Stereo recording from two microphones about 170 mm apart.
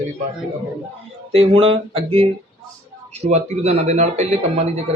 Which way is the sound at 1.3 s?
35° right (ahead or behind).